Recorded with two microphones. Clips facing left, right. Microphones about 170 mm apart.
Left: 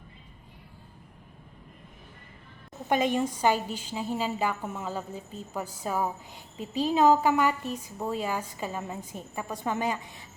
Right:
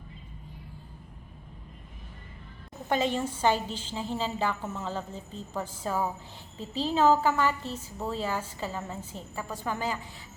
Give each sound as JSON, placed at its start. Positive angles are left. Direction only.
{"t": 2.9, "sound": "a woman's voice", "side_deg": 15}